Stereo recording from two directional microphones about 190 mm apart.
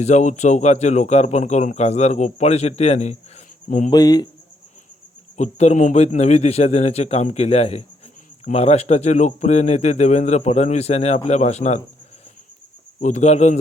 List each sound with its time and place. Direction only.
0.0 s a man's voice: 40° left (ahead or behind)
3.9 s speech: 20° left (ahead or behind)
5.4 s a man's voice: 35° left (ahead or behind)
13.0 s a man's voice: 40° left (ahead or behind)